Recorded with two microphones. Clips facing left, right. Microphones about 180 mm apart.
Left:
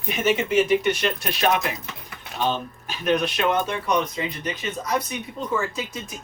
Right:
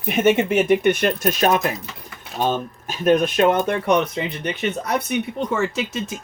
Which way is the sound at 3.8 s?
70° right (ahead or behind).